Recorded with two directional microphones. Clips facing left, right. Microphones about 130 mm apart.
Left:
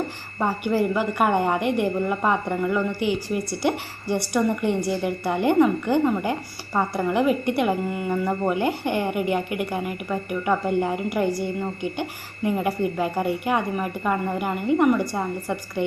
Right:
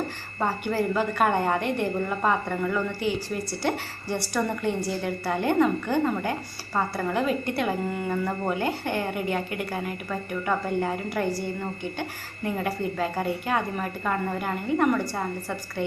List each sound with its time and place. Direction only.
0.4 s a woman's voice: 15° left (ahead or behind)
12.5 s a woman's voice: 15° left (ahead or behind)